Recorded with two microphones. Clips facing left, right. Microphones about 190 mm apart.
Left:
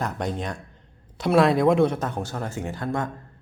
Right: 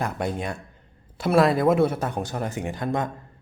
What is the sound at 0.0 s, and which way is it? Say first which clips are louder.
A man's voice: right 1 dB; 10° right (ahead or behind).